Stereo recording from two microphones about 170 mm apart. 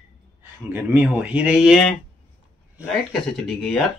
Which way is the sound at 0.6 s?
10° right (ahead or behind).